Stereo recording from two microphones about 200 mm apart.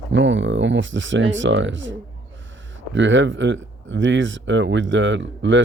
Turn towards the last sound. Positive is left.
turn(degrees=-70)  # may be behind; listen again after turning